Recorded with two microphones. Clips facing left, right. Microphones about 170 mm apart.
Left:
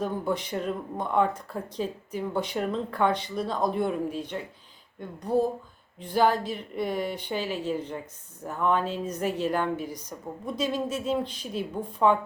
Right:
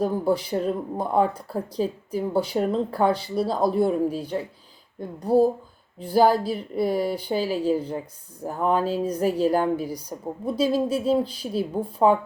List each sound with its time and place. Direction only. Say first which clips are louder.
0.0 s speech: right 6 dB; 35° right (ahead or behind)